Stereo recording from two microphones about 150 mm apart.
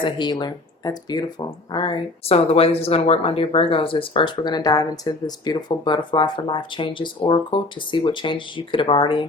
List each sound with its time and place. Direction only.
0.0 s speech: 30° left (ahead or behind)